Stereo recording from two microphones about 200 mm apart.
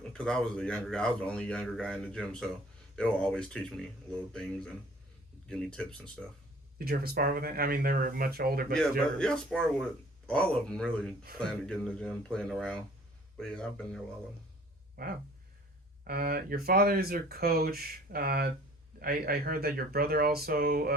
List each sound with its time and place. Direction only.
0.1 s a man's voice: 5° left (ahead or behind)
6.7 s speech: 50° right (ahead or behind)
8.7 s a man's voice: 5° left (ahead or behind)
16.0 s speech: 50° right (ahead or behind)